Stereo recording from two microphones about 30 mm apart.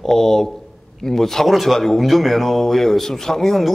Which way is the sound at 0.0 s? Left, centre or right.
Centre.